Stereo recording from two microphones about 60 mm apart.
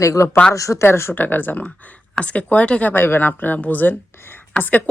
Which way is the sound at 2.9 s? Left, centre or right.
Left.